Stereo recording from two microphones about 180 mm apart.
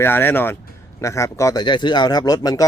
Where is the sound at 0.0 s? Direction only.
10° left (ahead or behind).